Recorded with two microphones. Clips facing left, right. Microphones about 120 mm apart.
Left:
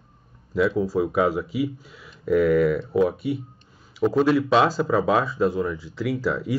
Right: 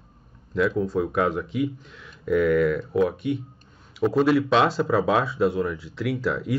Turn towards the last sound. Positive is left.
turn(degrees=0)  # may be behind; listen again after turning